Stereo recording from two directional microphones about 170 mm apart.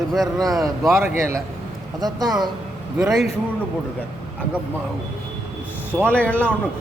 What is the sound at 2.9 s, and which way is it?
Speech, 5° right (ahead or behind).